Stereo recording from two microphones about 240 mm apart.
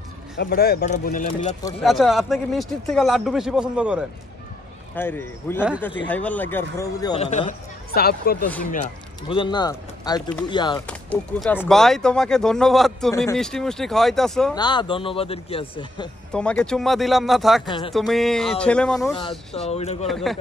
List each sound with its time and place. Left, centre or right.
0.4 s speech: left
1.9 s speech: centre
4.9 s speech: centre
7.2 s speech: left
9.3 s speech: centre
10.9 s speech: centre
14.5 s speech: centre
16.3 s speech: centre
17.6 s speech: centre
17.9 s speech: centre
19.1 s speech: left
20.1 s speech: centre